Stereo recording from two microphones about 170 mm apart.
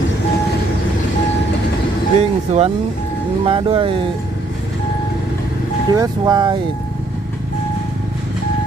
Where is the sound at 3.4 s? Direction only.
30° right (ahead or behind).